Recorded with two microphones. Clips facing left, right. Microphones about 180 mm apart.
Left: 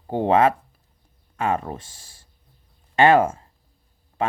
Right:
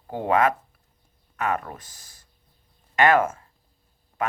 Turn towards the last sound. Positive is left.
turn(degrees=30)  # may be behind; listen again after turning